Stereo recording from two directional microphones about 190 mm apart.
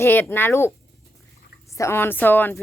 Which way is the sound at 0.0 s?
10° left (ahead or behind).